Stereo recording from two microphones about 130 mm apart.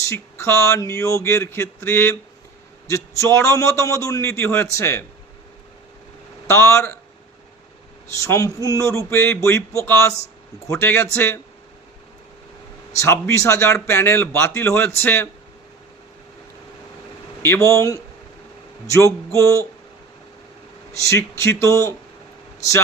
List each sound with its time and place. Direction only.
0.0 s a man's voice: 20° left (ahead or behind)
6.5 s a man's voice: 20° left (ahead or behind)
8.1 s a man's voice: 25° left (ahead or behind)
13.0 s a man's voice: 20° left (ahead or behind)
17.4 s a man's voice: 20° left (ahead or behind)
20.9 s a man's voice: 25° left (ahead or behind)